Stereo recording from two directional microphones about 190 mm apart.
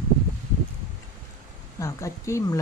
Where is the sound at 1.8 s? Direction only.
15° left (ahead or behind).